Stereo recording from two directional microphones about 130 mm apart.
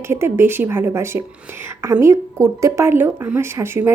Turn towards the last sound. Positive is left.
turn(degrees=-20)  # may be behind; listen again after turning